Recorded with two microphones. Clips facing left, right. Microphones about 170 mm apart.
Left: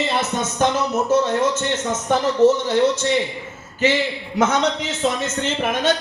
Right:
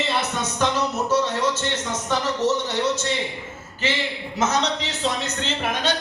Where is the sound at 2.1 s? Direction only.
50° left (ahead or behind).